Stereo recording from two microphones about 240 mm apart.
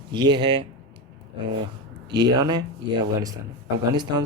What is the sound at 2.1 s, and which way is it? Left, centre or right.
Speech, centre.